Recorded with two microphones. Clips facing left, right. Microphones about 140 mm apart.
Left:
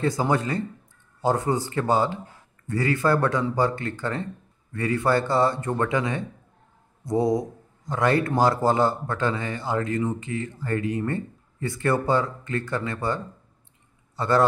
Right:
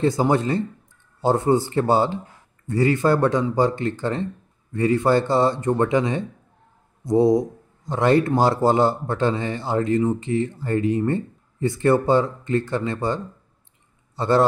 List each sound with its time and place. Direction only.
0.0 s a man's voice: 25° right (ahead or behind)